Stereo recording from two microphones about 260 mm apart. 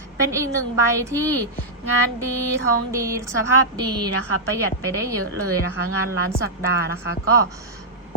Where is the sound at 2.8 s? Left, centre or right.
Centre.